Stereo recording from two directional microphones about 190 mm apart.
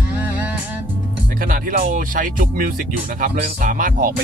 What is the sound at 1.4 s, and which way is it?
Speech, 45° right (ahead or behind).